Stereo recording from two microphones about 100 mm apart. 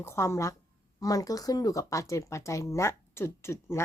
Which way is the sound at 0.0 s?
25° left (ahead or behind).